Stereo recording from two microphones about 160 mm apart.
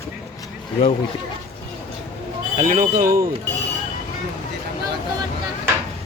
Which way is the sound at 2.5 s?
55° right (ahead or behind).